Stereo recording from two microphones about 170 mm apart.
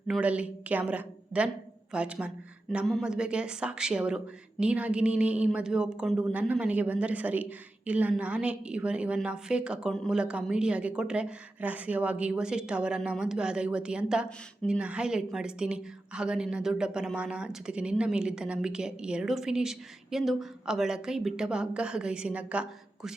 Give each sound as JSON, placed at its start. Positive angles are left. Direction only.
{"t": 0.1, "sound": "a woman's voice", "side_deg": -5}